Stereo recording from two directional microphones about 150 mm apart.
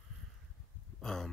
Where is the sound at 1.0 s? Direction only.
5° left (ahead or behind).